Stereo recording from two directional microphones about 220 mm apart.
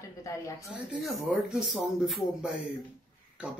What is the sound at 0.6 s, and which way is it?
Speech, centre (ahead or behind).